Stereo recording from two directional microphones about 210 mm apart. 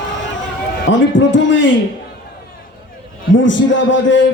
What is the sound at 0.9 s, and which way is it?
Speech, 60° left (ahead or behind).